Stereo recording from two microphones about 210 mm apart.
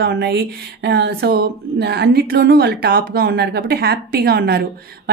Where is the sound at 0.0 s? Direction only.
50° right (ahead or behind).